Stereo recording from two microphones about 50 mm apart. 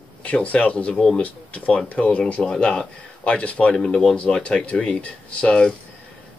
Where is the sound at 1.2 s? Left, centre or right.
Left.